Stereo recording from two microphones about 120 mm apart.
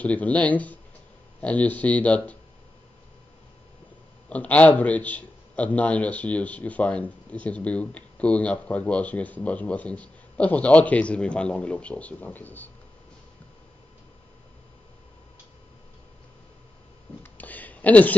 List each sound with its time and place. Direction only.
0.0 s a man's voice: 10° left (ahead or behind)
4.3 s a man's voice: 10° left (ahead or behind)
17.2 s a sound: 15° left (ahead or behind)